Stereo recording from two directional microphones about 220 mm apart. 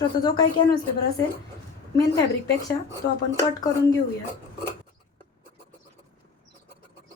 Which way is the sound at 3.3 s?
15° left (ahead or behind).